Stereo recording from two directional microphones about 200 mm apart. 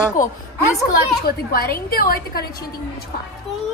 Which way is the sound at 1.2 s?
50° left (ahead or behind).